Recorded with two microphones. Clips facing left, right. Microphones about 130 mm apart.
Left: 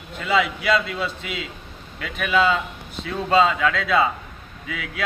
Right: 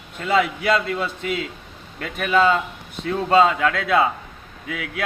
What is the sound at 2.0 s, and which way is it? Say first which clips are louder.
A man's voice: right 2 dB; 45° right (ahead or behind).